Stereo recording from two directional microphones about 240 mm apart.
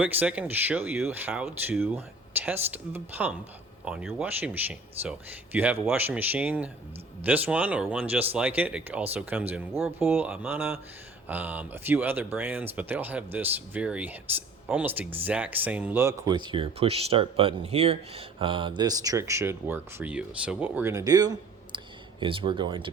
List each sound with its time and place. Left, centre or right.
0.0 s speech: centre